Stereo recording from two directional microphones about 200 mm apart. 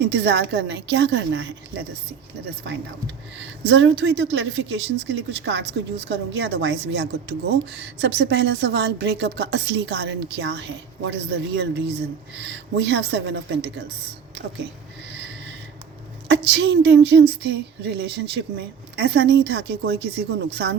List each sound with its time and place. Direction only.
0.0 s speech: 55° right (ahead or behind)
3.4 s speech: 65° right (ahead or behind)
16.5 s speech: 60° right (ahead or behind)